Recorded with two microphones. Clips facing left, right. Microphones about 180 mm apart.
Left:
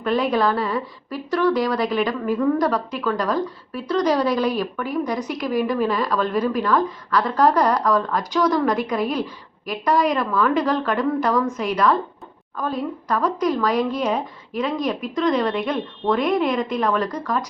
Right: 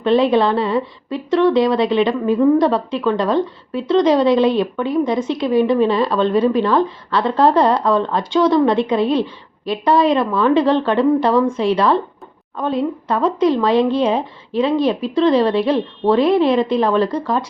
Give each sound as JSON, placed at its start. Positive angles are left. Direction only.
{"t": 0.0, "sound": "a woman's voice", "side_deg": -25}